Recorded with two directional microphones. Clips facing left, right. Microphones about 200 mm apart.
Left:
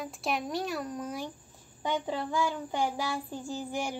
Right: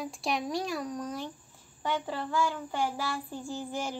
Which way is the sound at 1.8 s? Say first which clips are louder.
Left 1 dB; 15° left (ahead or behind).